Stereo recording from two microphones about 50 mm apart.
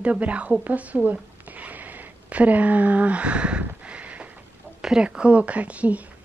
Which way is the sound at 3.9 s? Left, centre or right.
Right.